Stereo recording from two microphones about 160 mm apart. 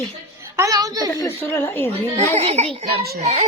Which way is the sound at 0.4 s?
20° right (ahead or behind).